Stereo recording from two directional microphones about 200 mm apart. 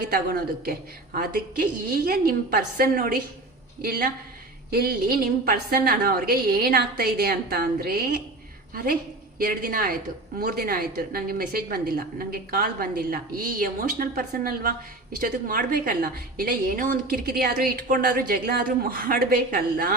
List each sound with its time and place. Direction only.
0.1 s a woman's voice: 50° right (ahead or behind)